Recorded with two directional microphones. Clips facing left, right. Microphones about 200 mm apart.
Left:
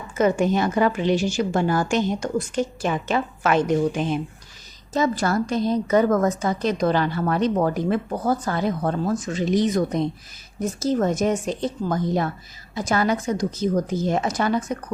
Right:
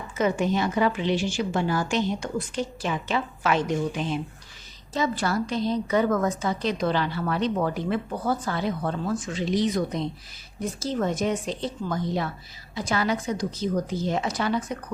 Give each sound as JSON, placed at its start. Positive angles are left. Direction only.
{"t": 0.2, "sound": "a woman's voice", "side_deg": 45}